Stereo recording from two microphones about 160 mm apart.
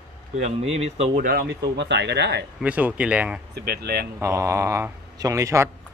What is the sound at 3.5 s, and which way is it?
Speech, 75° right (ahead or behind).